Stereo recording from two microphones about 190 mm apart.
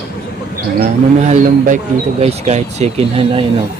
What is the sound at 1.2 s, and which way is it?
Speech, 40° right (ahead or behind).